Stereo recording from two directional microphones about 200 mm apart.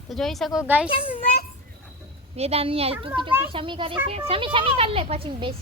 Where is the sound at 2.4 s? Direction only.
30° right (ahead or behind).